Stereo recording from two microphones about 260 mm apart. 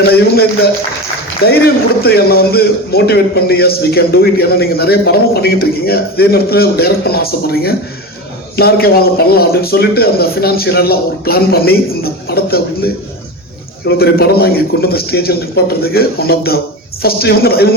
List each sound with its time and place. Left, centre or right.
0.1 s a man's voice: left